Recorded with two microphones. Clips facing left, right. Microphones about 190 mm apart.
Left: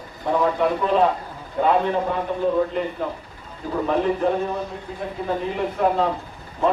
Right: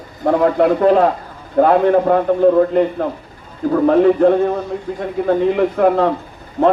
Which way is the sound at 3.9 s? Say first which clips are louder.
Right 9 dB; 65° right (ahead or behind).